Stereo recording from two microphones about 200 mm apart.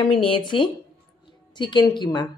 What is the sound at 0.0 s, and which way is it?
A woman's voice, 25° left (ahead or behind).